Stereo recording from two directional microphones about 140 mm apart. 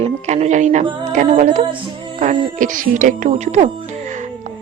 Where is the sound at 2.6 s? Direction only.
70° right (ahead or behind).